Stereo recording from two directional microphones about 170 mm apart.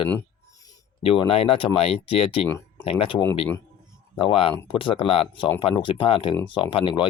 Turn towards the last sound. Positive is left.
turn(degrees=30)  # may be behind; listen again after turning